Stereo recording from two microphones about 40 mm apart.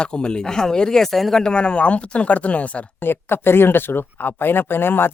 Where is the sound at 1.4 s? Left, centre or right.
Left.